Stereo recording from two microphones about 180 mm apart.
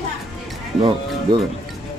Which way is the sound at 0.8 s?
30° right (ahead or behind).